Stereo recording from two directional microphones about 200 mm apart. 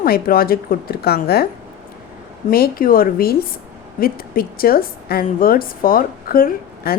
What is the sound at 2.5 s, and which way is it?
A woman's voice, 45° left (ahead or behind).